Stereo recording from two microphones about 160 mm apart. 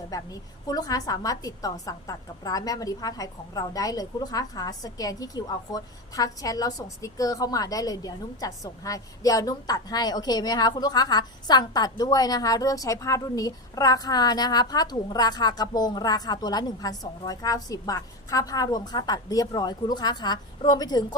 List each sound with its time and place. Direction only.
0.1 s a woman's voice: 20° left (ahead or behind)